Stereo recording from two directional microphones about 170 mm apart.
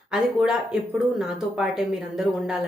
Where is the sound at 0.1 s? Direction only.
5° right (ahead or behind).